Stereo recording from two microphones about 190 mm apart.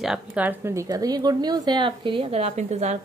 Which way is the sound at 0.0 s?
5° right (ahead or behind).